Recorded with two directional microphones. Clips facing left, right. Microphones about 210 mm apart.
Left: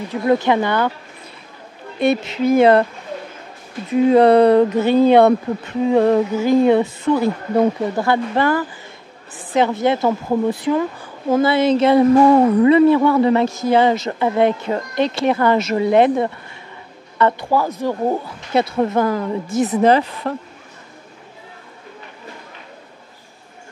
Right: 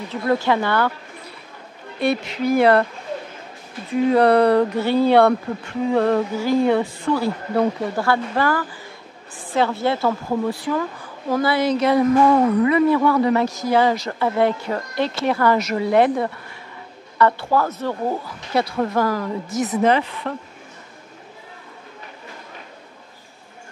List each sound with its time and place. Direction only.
0.1 s a woman's voice: 20° left (ahead or behind)
2.0 s a woman's voice: 20° left (ahead or behind)
3.9 s a woman's voice: 20° left (ahead or behind); by 20.3 s 40° left (ahead or behind)